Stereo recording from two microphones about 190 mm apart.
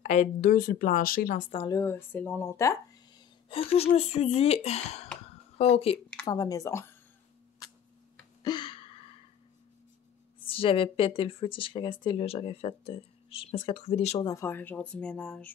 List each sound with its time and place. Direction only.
0.0 s speech: 40° left (ahead or behind)
1.5 s speech: 20° left (ahead or behind)
3.4 s speech: 30° left (ahead or behind)
6.2 s speech: 20° left (ahead or behind)
8.4 s gasp: 25° left (ahead or behind)
10.4 s speech: 30° left (ahead or behind)
14.2 s speech: 15° left (ahead or behind)